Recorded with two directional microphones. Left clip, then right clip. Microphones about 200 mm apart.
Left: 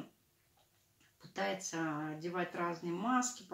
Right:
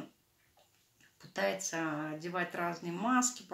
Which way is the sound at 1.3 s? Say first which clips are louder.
Right 4 dB; 35° right (ahead or behind).